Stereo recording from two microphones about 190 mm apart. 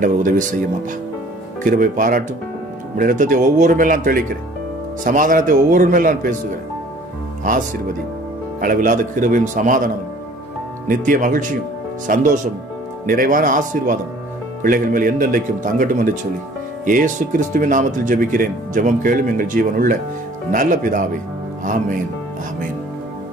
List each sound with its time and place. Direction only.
0.0 s speech: 45° right (ahead or behind)
1.6 s speech: 45° right (ahead or behind)
8.5 s speech: 45° right (ahead or behind)
10.9 s speech: 45° right (ahead or behind)